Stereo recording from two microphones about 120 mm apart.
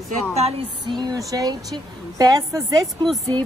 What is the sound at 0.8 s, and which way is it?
A woman's voice, 35° right (ahead or behind).